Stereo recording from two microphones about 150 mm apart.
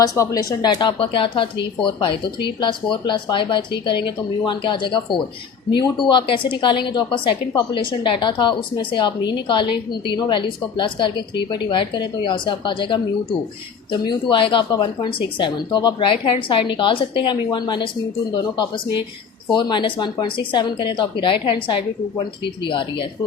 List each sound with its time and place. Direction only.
0.0 s a woman's voice: 20° left (ahead or behind)